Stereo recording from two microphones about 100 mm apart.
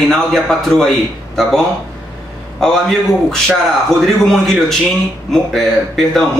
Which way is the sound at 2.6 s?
5° left (ahead or behind).